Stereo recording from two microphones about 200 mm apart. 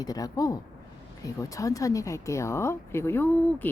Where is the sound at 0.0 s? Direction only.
20° left (ahead or behind).